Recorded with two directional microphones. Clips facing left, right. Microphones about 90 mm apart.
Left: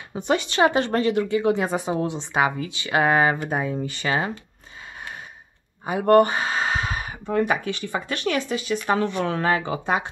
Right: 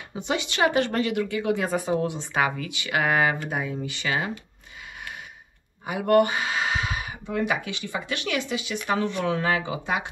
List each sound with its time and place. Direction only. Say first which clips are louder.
0.1 s a woman's voice: left 5 dB; 40° left (ahead or behind)
5.9 s a woman's voice: left 4 dB; 35° left (ahead or behind)